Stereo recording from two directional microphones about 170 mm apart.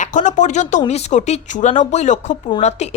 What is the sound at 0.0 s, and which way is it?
A woman's voice, 45° left (ahead or behind).